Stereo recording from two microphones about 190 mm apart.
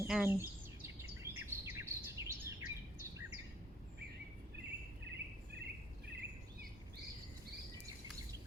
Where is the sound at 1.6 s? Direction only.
10° right (ahead or behind).